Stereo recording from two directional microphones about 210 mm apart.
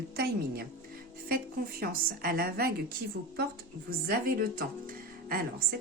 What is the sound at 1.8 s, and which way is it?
Speech, 45° right (ahead or behind).